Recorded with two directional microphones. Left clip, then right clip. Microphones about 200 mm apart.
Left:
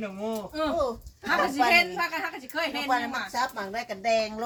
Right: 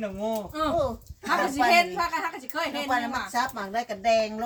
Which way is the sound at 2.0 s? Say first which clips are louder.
Right 2 dB; 15° right (ahead or behind).